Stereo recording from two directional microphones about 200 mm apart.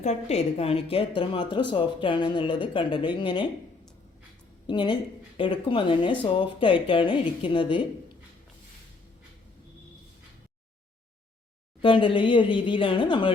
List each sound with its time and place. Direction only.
0.0 s a woman's voice: 35° left (ahead or behind)
4.6 s a woman's voice: 25° left (ahead or behind)
11.8 s a woman's voice: 25° left (ahead or behind)